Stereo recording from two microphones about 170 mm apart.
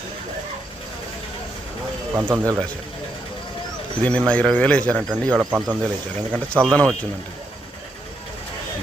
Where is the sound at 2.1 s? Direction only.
10° right (ahead or behind).